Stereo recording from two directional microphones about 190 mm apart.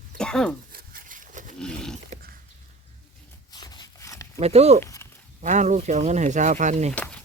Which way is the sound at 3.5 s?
20° left (ahead or behind).